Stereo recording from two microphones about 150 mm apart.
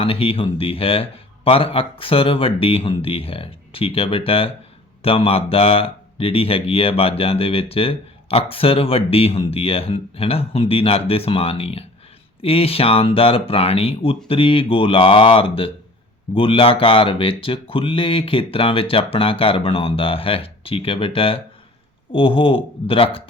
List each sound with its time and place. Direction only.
0.0 s speech: 40° left (ahead or behind)